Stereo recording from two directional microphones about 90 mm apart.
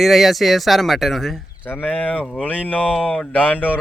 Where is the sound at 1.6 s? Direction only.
20° left (ahead or behind).